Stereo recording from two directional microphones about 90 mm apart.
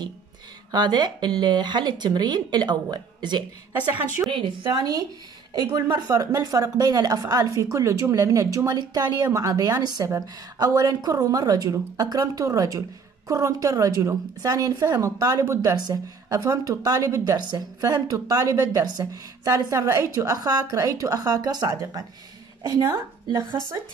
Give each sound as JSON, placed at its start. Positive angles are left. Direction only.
{"t": 0.7, "sound": "speech", "side_deg": -50}
{"t": 4.3, "sound": "speech", "side_deg": -70}
{"t": 4.7, "sound": "a woman's voice", "side_deg": -45}
{"t": 15.7, "sound": "a woman's voice", "side_deg": -40}
{"t": 17.4, "sound": "a woman's voice", "side_deg": -50}